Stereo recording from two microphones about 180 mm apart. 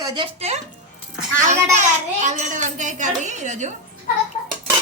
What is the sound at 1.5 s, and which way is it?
A child's voice, 40° right (ahead or behind).